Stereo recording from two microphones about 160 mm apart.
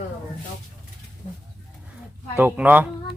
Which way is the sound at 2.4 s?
10° right (ahead or behind).